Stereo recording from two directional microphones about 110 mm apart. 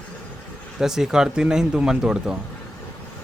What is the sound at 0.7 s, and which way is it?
Speech, 5° right (ahead or behind).